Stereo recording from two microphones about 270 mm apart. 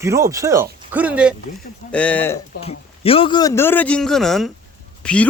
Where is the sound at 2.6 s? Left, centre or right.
Left.